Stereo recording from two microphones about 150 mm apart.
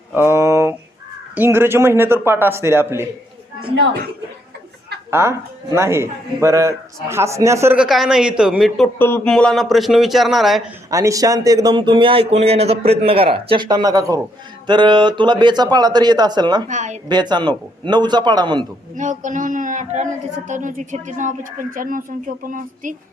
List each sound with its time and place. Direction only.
0.1 s a sound: 15° right (ahead or behind)
1.4 s speech: 15° right (ahead or behind)
5.1 s speech: 20° right (ahead or behind)
7.8 s a man's voice: 5° right (ahead or behind)
9.0 s a man's voice: 15° left (ahead or behind); by 10.7 s centre (ahead or behind)
10.9 s speech: 20° right (ahead or behind)
16.6 s a woman's voice: 55° right (ahead or behind)
17.1 s speech: 30° right (ahead or behind)
18.9 s speech: 55° right (ahead or behind)